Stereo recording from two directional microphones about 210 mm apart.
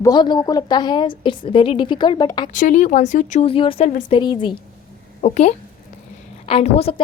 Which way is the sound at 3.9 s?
40° left (ahead or behind).